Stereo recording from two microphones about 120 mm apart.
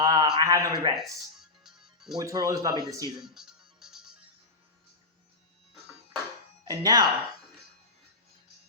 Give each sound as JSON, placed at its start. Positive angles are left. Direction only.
{"t": 0.0, "sound": "a sound", "side_deg": -30}
{"t": 0.3, "sound": "a man's voice", "side_deg": -30}
{"t": 1.4, "sound": "music", "side_deg": -5}
{"t": 2.1, "sound": "speech", "side_deg": -30}
{"t": 3.2, "sound": "music", "side_deg": -5}
{"t": 6.7, "sound": "speech", "side_deg": -35}